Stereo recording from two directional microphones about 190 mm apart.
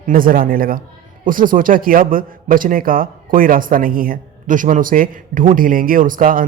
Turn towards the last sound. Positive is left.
turn(degrees=-45)  # may be behind; listen again after turning